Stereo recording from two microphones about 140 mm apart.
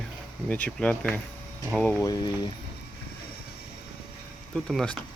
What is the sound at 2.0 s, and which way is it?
Speech, 25° left (ahead or behind).